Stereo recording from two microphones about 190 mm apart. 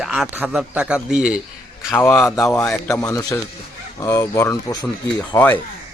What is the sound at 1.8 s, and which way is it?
A man's voice, 15° left (ahead or behind).